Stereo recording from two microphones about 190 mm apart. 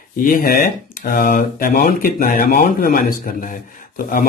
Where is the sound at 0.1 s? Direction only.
45° left (ahead or behind).